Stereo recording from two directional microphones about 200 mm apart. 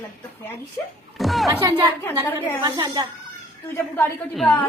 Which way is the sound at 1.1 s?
Centre (ahead or behind).